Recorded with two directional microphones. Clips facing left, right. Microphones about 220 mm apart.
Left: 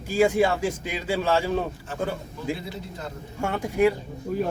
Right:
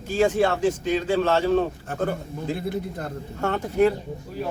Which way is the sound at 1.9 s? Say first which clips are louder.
Right 3 dB; 55° right (ahead or behind).